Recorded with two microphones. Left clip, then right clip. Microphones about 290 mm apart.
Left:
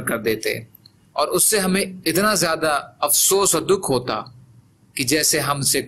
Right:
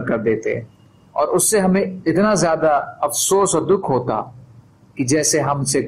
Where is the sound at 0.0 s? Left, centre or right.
Left.